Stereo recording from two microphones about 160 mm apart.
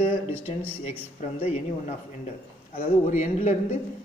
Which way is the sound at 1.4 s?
45° left (ahead or behind).